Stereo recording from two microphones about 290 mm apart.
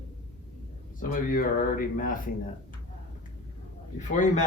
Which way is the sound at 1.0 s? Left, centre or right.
Left.